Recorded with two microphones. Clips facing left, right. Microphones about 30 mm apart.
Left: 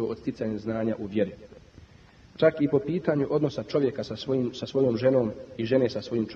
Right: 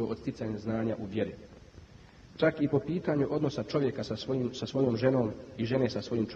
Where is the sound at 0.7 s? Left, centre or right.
Centre.